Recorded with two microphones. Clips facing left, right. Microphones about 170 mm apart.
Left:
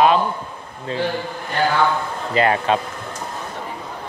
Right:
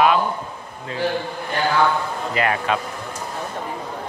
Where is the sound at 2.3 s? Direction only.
30° left (ahead or behind).